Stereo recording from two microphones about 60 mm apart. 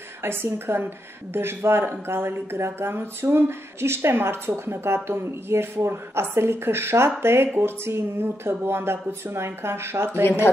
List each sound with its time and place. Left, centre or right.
0.2 s a woman's voice: right
10.4 s a woman's voice: left